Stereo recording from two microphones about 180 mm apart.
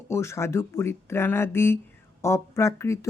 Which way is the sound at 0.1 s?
15° left (ahead or behind).